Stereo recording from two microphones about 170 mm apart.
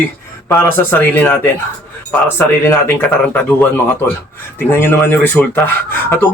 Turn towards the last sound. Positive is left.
turn(degrees=15)  # may be behind; listen again after turning